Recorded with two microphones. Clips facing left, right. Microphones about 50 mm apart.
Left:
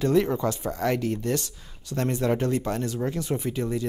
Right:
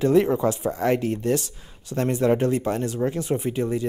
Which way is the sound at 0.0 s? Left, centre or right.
Centre.